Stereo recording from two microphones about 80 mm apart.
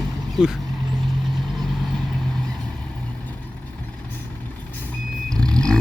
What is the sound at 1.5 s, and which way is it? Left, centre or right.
Vehicle, centre.